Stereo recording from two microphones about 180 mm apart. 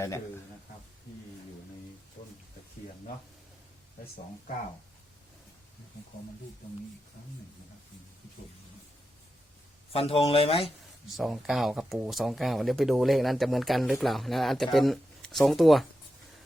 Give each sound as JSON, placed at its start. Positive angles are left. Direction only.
{"t": 2.2, "sound": "a sound", "side_deg": 45}
{"t": 9.9, "sound": "speech", "side_deg": 35}
{"t": 11.1, "sound": "speech", "side_deg": 0}